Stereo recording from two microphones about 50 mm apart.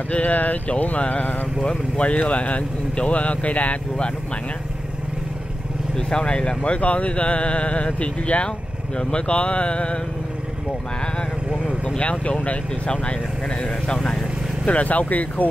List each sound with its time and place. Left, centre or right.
0.1 s speech: left
5.9 s speech: centre
12.0 s speech: left